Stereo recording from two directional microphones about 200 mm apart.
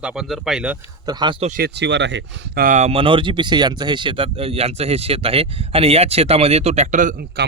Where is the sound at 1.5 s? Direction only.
50° right (ahead or behind).